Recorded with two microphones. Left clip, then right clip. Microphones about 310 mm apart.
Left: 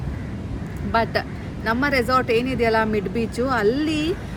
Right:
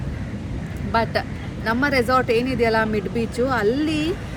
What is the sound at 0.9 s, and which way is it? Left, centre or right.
Speech, centre.